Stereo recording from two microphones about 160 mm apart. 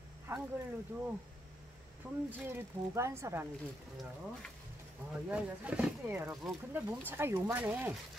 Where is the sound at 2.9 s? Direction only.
20° right (ahead or behind).